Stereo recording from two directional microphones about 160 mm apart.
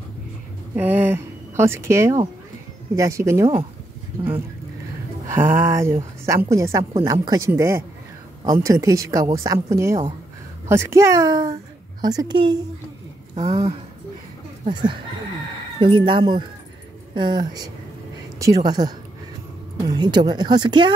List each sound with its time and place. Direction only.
0.7 s a woman's voice: 10° right (ahead or behind)
5.3 s a woman's voice: 15° right (ahead or behind)